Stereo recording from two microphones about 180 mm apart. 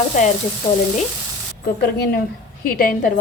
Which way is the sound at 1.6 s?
60° left (ahead or behind).